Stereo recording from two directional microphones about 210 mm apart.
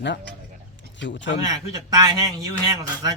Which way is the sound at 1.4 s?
20° right (ahead or behind).